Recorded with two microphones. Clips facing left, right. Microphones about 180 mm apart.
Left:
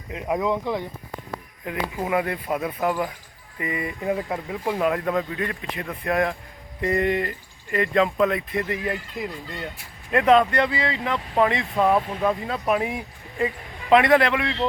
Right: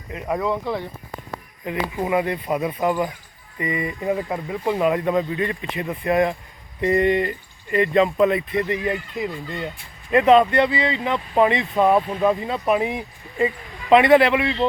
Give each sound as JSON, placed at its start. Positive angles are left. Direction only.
{"t": 0.1, "sound": "speech", "side_deg": 10}
{"t": 1.6, "sound": "speech", "side_deg": 0}